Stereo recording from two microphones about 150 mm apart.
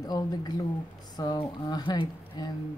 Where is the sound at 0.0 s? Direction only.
25° left (ahead or behind).